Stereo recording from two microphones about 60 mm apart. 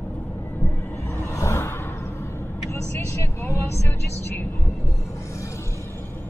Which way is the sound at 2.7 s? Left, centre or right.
Left.